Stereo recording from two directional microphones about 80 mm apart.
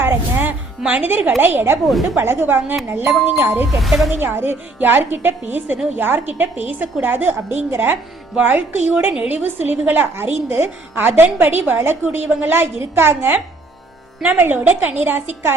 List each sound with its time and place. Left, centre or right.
0.0 s music: right
0.8 s a woman's voice: centre
3.8 s speech: centre
4.1 s a woman's voice: right